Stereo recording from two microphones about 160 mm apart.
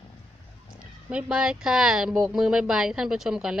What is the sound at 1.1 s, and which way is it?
Speech, 5° right (ahead or behind).